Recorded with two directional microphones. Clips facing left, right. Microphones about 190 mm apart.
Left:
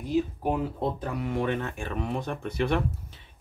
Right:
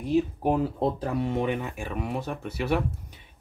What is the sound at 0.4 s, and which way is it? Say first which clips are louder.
Speech: right 3 dB; 30° right (ahead or behind).